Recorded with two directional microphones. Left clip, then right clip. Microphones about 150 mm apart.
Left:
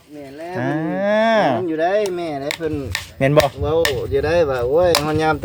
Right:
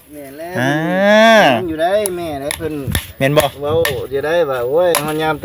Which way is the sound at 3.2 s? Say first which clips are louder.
Right 1 dB; 10° right (ahead or behind).